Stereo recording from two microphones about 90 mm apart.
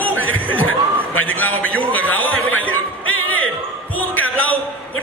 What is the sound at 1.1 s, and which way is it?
Speech, 20° left (ahead or behind).